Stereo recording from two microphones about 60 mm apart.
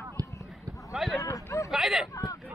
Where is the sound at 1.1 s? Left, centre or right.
Left.